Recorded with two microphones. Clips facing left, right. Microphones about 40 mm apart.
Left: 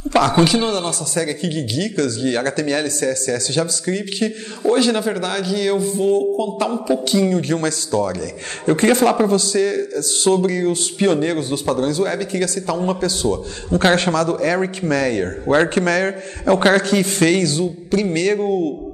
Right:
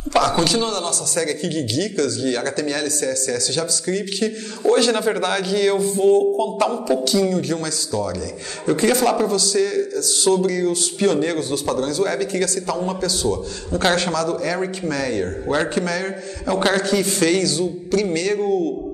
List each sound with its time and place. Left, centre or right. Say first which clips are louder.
0.2 s a man's voice: left 3 dB; centre; by 3.6 s left
4.6 s a man's voice: even; centre
5.0 s speech: right 1 dB; centre
7.1 s a man's voice: left 2 dB; left
15.4 s a man's voice: left 7 dB; left
15.7 s a man's voice: left 5 dB; left
18.4 s a man's voice: left 1 dB; centre